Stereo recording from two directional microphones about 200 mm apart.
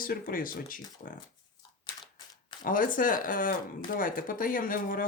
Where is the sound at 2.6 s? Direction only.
45° left (ahead or behind).